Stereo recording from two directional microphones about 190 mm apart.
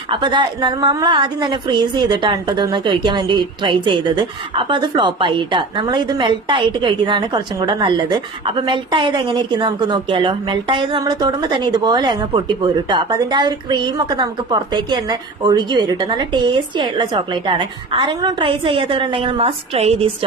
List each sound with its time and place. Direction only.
0.1 s a woman's voice: 25° right (ahead or behind)